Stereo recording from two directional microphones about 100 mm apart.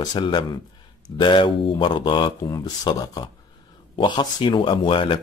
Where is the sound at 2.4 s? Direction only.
40° left (ahead or behind).